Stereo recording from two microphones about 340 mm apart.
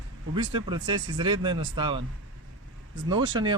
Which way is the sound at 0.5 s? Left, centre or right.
Centre.